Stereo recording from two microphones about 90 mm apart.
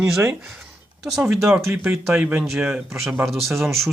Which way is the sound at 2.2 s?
15° right (ahead or behind).